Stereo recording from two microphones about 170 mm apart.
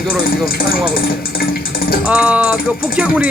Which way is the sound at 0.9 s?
60° left (ahead or behind).